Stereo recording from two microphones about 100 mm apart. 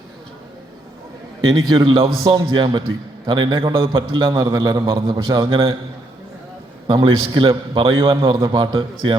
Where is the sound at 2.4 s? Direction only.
50° right (ahead or behind).